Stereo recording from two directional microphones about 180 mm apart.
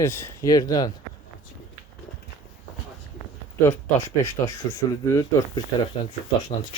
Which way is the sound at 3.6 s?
15° left (ahead or behind).